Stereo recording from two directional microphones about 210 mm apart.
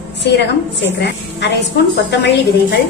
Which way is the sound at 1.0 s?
55° left (ahead or behind).